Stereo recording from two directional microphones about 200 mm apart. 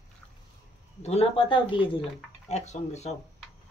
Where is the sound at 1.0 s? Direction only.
30° left (ahead or behind).